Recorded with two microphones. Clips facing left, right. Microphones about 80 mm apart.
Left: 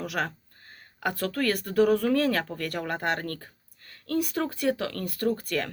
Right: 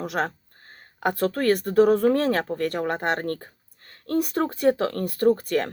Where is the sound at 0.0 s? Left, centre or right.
Right.